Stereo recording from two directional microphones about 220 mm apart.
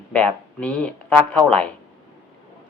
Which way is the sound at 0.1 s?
5° left (ahead or behind).